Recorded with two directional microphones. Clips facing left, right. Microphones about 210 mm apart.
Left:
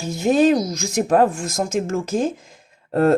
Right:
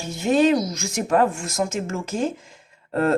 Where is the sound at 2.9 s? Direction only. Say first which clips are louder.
Left 5 dB; 40° left (ahead or behind).